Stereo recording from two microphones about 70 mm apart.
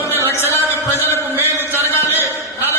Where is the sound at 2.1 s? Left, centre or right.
Right.